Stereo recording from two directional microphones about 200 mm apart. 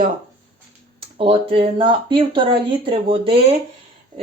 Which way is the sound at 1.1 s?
25° right (ahead or behind).